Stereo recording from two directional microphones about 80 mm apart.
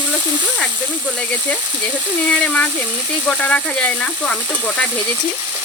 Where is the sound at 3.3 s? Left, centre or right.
Centre.